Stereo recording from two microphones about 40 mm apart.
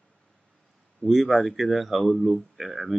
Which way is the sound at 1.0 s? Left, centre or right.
Centre.